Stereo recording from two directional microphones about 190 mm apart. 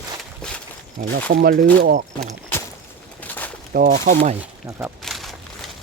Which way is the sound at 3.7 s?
45° right (ahead or behind).